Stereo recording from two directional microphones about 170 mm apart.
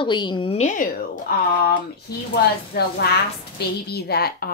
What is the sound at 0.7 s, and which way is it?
Speech, 50° left (ahead or behind).